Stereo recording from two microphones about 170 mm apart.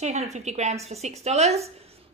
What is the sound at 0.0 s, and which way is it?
A woman's voice, 40° right (ahead or behind).